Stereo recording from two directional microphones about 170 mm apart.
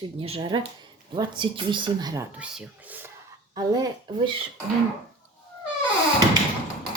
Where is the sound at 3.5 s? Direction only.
25° right (ahead or behind).